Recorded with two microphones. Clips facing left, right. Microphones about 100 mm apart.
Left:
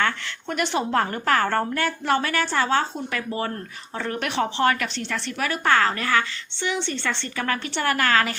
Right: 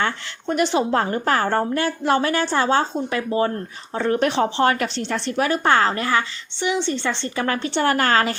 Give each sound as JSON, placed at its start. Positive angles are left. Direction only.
{"t": 0.0, "sound": "a woman's voice", "side_deg": -25}
{"t": 7.4, "sound": "a woman's voice", "side_deg": -30}